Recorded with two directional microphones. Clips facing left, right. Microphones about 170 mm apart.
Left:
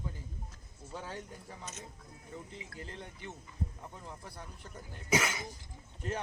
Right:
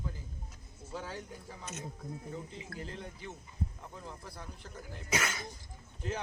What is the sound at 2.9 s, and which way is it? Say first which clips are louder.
Speech: right 2 dB; centre (ahead or behind).